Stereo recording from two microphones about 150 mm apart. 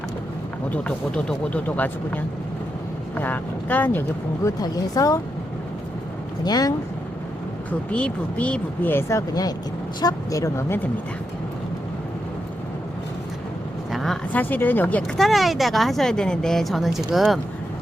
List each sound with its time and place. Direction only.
0.7 s speech: 5° left (ahead or behind)
4.4 s speech: 25° left (ahead or behind)
6.4 s speech: 25° left (ahead or behind)
7.9 s speech: 10° left (ahead or behind)
13.9 s a woman's voice: centre (ahead or behind)
14.4 s speech: 10° left (ahead or behind)